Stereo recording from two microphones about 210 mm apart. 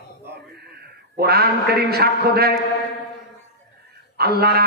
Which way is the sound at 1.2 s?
50° right (ahead or behind).